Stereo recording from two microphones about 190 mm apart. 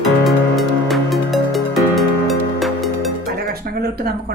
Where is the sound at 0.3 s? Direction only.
Centre (ahead or behind).